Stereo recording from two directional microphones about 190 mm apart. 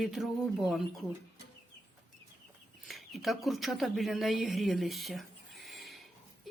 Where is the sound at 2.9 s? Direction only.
Centre (ahead or behind).